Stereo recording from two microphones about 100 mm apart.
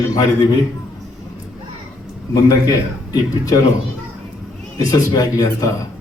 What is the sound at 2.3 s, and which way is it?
A man's voice, 35° left (ahead or behind).